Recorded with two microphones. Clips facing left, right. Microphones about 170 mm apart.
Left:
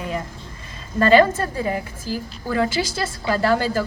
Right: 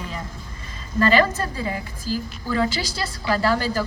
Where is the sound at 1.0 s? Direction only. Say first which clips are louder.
Left 4 dB; 55° left (ahead or behind).